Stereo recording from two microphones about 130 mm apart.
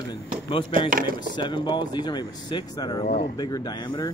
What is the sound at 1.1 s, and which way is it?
Speech, 35° left (ahead or behind).